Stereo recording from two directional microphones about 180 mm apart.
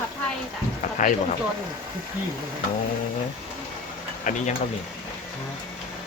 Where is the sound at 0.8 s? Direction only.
45° left (ahead or behind).